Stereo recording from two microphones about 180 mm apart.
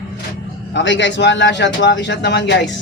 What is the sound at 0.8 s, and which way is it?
Speech, 80° left.